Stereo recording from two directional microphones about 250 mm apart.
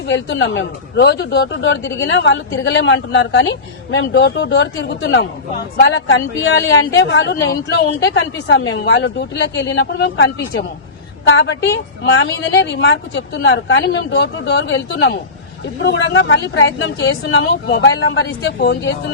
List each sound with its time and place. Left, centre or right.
0.1 s a woman's voice: left